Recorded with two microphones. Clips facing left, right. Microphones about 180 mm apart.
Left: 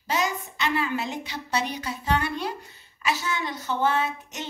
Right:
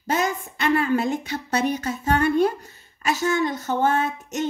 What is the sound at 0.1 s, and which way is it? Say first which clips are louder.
A woman's voice: right 3 dB; 50° right (ahead or behind).